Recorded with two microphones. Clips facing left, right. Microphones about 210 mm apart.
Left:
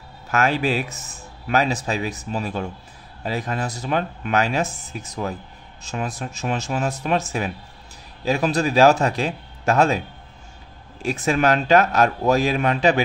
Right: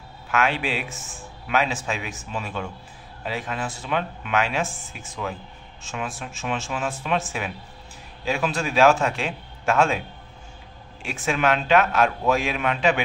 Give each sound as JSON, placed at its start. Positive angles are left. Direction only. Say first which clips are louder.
{"t": 0.3, "sound": "speech", "louder": "left 4 dB", "side_deg": 40}